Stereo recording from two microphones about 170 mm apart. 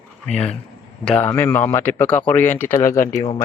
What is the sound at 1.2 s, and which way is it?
Speech, 15° left (ahead or behind).